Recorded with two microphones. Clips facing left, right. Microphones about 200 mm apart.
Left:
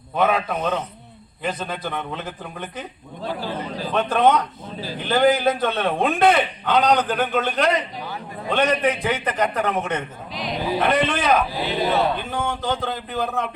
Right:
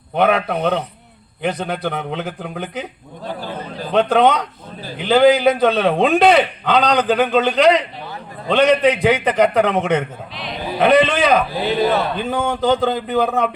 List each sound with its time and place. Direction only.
0.2 s a man's voice: 70° right (ahead or behind)
3.9 s a man's voice: 80° right
10.3 s sheep: 40° left (ahead or behind)
10.8 s a man's voice: 80° right